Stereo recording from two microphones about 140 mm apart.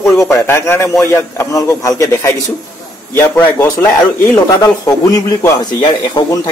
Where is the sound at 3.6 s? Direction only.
15° left (ahead or behind).